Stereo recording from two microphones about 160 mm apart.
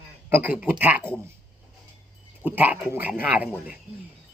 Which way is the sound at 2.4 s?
10° right (ahead or behind).